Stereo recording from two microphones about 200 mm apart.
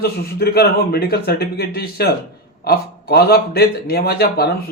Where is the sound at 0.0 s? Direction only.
50° left (ahead or behind).